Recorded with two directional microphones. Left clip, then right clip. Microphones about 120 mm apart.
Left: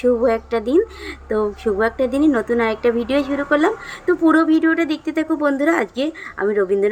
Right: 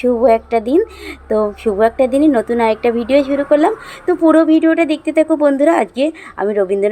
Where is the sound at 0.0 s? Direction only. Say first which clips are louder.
Right 5 dB; 20° right (ahead or behind).